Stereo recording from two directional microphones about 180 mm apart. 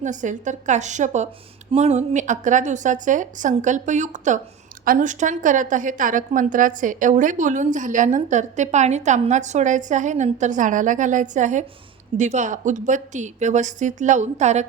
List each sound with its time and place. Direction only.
0.0 s a woman's voice: 45° right (ahead or behind)